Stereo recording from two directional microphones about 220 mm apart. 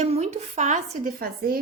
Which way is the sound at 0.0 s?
30° right (ahead or behind).